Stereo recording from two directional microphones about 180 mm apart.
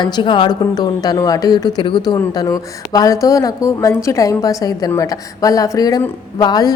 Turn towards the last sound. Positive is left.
turn(degrees=20)  # may be behind; listen again after turning